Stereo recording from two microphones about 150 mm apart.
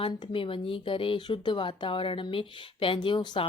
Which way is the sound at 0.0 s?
35° left (ahead or behind).